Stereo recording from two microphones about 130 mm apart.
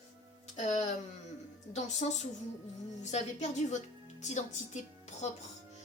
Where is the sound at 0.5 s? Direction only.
60° left (ahead or behind).